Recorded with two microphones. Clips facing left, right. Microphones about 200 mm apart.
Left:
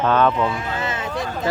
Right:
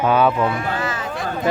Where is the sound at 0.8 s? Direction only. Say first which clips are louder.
Right 1 dB; 25° left (ahead or behind).